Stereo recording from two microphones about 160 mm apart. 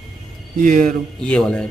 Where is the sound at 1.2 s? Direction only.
5° left (ahead or behind).